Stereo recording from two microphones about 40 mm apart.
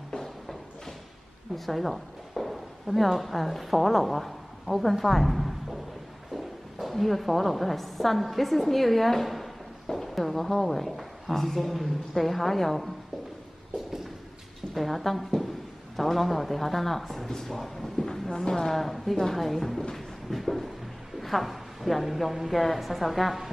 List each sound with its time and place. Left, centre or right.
0.1 s a sound: centre
1.7 s a woman's voice: centre
14.7 s a woman's voice: centre
18.3 s speech: centre
18.8 s a woman's voice: centre
20.0 s a sound: centre
21.2 s a woman's voice: centre